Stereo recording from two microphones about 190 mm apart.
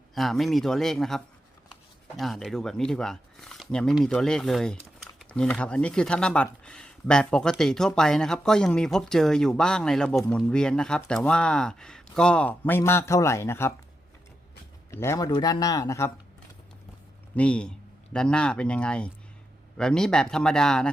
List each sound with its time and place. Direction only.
0.1 s speech: centre (ahead or behind)
14.8 s a man's voice: 15° left (ahead or behind)
17.3 s speech: 5° left (ahead or behind)